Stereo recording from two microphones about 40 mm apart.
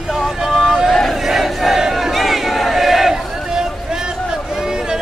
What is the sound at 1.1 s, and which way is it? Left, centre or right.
Battle cry, centre.